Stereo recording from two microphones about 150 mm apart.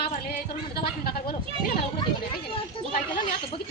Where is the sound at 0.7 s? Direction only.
90° left.